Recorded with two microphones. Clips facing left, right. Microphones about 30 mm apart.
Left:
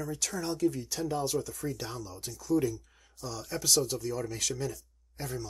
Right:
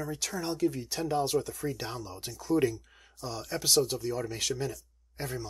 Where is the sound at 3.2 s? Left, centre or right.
Right.